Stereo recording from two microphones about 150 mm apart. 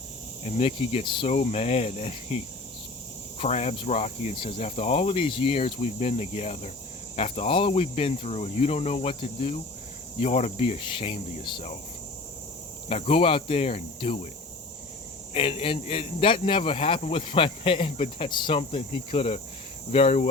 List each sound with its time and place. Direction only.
0.4 s speech: 45° left (ahead or behind)
1.3 s speech: 45° left (ahead or behind)
12.9 s speech: 40° left (ahead or behind)
15.3 s speech: 40° left (ahead or behind)
18.3 s speech: 30° left (ahead or behind)